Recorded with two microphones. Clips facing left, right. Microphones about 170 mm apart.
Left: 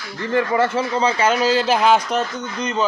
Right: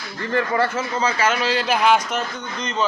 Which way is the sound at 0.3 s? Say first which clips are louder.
Left 3 dB; 15° left (ahead or behind).